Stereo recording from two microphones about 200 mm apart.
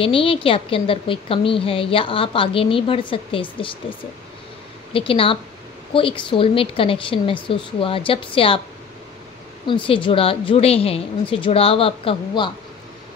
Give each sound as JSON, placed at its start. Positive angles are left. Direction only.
{"t": 0.0, "sound": "a woman's voice", "side_deg": 25}
{"t": 4.9, "sound": "a woman's voice", "side_deg": 25}
{"t": 9.7, "sound": "a woman's voice", "side_deg": 25}